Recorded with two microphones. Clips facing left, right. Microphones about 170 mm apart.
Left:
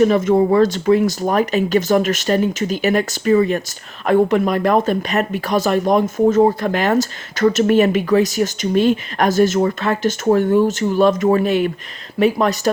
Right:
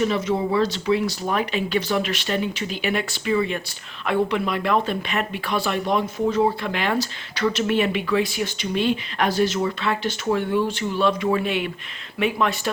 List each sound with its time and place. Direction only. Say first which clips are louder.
0.0 s speech: left 8 dB; 50° left (ahead or behind)